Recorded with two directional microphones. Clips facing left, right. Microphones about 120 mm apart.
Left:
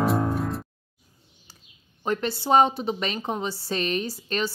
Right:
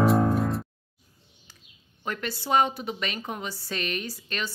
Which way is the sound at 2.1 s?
30° left (ahead or behind).